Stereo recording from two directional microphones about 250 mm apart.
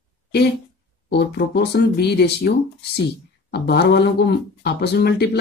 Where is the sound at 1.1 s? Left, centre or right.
Left.